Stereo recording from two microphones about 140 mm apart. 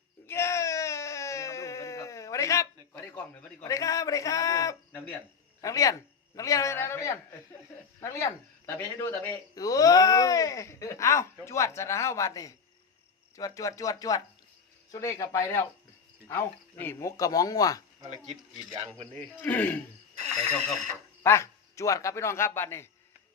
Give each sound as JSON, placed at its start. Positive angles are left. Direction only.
{"t": 0.3, "sound": "a sound", "side_deg": 20}
{"t": 2.9, "sound": "a man's voice", "side_deg": 15}
{"t": 9.6, "sound": "a man's voice", "side_deg": 25}
{"t": 19.4, "sound": "speech", "side_deg": 10}
{"t": 21.2, "sound": "speech", "side_deg": 20}